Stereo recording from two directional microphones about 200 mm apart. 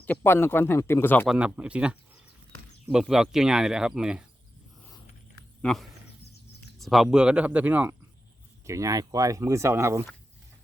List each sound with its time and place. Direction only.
0.0 s speech: 10° left (ahead or behind)
1.3 s speech: 5° right (ahead or behind)
5.6 s speech: centre (ahead or behind); by 10.1 s 15° right (ahead or behind)